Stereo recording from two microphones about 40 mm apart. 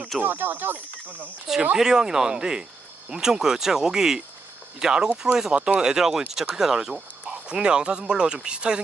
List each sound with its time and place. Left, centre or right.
0.2 s speech: right
1.8 s speech: centre
5.5 s speech: right
5.8 s speech: centre
7.2 s speech: right